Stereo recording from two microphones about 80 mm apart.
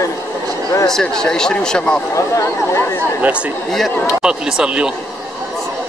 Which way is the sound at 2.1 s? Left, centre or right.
Left.